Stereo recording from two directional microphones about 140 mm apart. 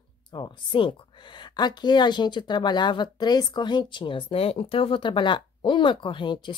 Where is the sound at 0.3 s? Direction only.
35° left (ahead or behind).